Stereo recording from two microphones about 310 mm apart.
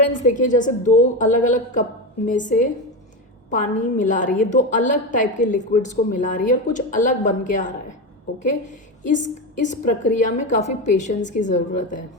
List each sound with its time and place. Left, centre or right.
0.1 s a woman's voice: left